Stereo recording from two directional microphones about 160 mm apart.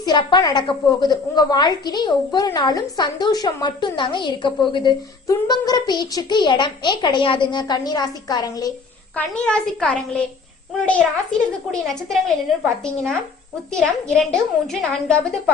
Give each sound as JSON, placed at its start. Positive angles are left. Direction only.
{"t": 0.0, "sound": "a woman's voice", "side_deg": 30}
{"t": 9.1, "sound": "a child's voice", "side_deg": 10}
{"t": 13.7, "sound": "a woman's voice", "side_deg": 5}